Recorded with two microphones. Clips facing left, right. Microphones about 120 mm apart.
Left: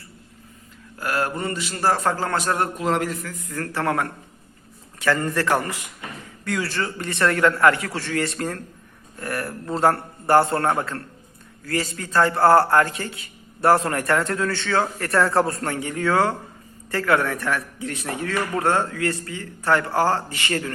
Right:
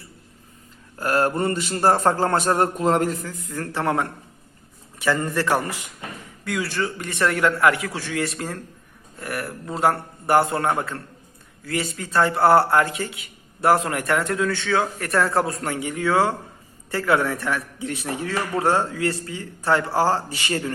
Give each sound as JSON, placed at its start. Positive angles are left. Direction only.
{"t": 0.9, "sound": "a sound", "side_deg": -35}
{"t": 1.7, "sound": "speech", "side_deg": -30}
{"t": 3.2, "sound": "a man's voice", "side_deg": -20}
{"t": 16.9, "sound": "a man's voice", "side_deg": -20}